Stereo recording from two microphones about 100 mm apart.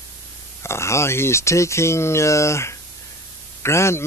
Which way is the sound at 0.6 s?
25° left (ahead or behind).